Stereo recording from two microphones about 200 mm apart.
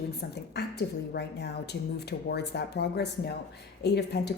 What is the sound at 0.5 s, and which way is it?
A woman's voice, 55° left (ahead or behind).